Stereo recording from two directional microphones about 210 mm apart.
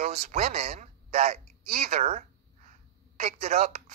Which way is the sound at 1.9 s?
35° right (ahead or behind).